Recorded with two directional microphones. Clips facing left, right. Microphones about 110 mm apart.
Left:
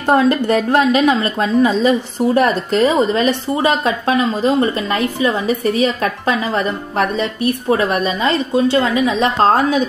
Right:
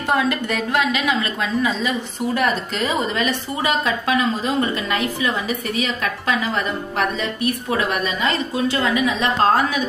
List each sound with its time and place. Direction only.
0.1 s a woman's voice: 40° left (ahead or behind)